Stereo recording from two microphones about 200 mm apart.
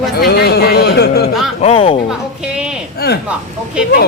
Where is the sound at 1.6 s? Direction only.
30° left (ahead or behind).